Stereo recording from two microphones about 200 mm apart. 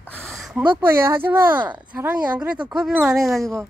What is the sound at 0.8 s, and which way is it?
Speech, 10° right (ahead or behind).